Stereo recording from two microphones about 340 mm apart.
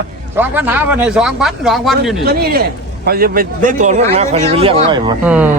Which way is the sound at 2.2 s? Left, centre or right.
Right.